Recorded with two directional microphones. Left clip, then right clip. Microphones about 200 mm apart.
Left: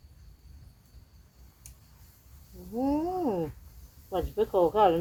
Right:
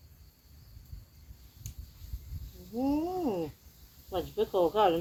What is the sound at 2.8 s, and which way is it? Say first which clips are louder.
Speech: left 2 dB; 15° left (ahead or behind).